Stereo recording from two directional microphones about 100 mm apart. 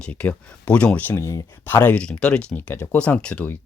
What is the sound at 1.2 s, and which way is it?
Speech, 30° left (ahead or behind).